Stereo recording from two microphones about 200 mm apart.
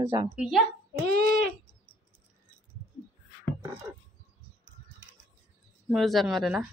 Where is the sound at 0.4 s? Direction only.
Centre (ahead or behind).